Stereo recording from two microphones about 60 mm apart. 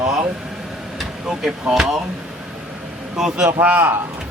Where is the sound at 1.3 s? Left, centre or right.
Centre.